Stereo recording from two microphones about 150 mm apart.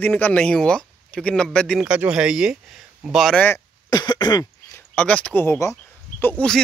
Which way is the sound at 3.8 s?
30° left (ahead or behind).